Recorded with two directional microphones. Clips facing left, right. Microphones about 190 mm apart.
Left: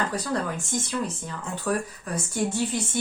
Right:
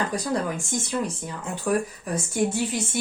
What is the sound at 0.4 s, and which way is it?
A woman's voice, 15° right (ahead or behind).